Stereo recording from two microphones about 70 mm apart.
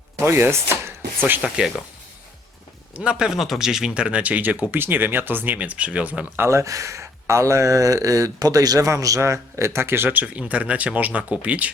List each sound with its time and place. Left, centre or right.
0.2 s speech: right
1.2 s speech: right
2.9 s speech: centre
6.3 s speech: right
10.2 s speech: centre